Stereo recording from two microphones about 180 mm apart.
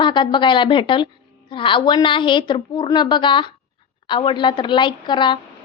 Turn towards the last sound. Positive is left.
turn(degrees=25)  # may be behind; listen again after turning